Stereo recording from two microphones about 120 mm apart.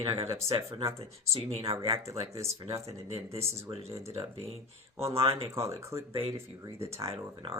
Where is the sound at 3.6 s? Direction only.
25° right (ahead or behind).